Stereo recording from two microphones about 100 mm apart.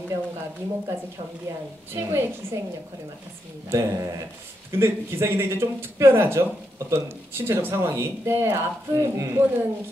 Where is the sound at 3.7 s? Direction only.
25° right (ahead or behind).